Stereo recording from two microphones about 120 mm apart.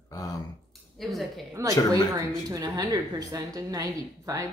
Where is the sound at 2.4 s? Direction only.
30° right (ahead or behind).